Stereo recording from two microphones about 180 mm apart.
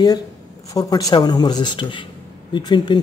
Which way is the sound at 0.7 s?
20° left (ahead or behind).